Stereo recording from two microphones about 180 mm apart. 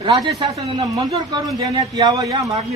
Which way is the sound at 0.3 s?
25° right (ahead or behind).